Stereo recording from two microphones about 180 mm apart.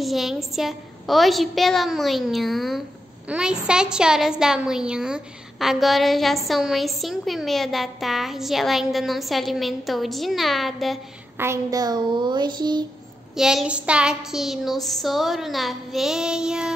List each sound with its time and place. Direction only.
0.0 s a woman's voice: centre (ahead or behind)
11.3 s a woman's voice: 15° right (ahead or behind)
13.4 s a woman's voice: 5° right (ahead or behind)